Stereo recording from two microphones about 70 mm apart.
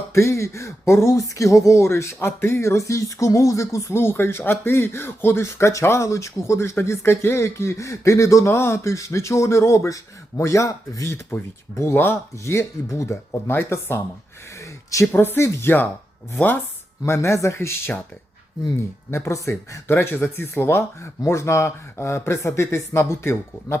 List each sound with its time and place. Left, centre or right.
0.1 s speech: left
11.1 s speech: left
12.5 s speech: left
13.5 s speech: left
14.6 s a sound: left
15.1 s speech: left
17.1 s speech: left
19.1 s speech: left
19.9 s speech: left